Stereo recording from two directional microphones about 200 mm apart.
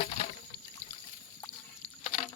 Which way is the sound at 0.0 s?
30° left (ahead or behind).